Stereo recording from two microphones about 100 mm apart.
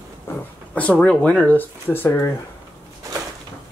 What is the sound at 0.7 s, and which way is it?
Speech, 15° left (ahead or behind).